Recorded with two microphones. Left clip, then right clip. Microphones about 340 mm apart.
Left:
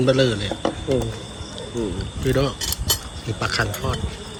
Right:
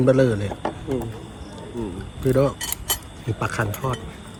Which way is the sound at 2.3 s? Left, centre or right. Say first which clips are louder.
Right 2 dB; centre.